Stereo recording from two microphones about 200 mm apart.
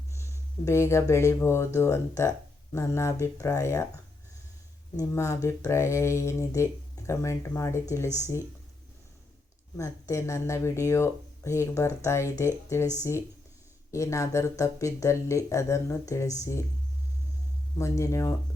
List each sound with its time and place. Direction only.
0.1 s speech: 15° left (ahead or behind)
4.9 s speech: 15° left (ahead or behind)
9.7 s speech: 15° left (ahead or behind)
13.9 s speech: 15° left (ahead or behind)
17.7 s speech: 15° left (ahead or behind)